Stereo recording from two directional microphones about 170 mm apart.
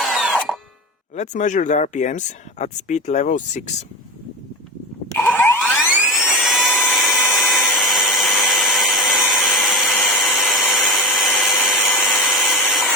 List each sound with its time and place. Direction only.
0.0 s tools: centre (ahead or behind)
0.3 s a sound: centre (ahead or behind)
1.1 s speech: 45° left (ahead or behind)
5.2 s a sound: 10° left (ahead or behind)
6.0 s dental drill: 5° right (ahead or behind)
6.8 s tools: centre (ahead or behind)